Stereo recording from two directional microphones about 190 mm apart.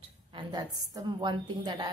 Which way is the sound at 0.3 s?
25° right (ahead or behind).